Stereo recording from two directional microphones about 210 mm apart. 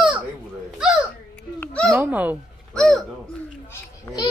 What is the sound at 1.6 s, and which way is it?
Speech, 5° left (ahead or behind).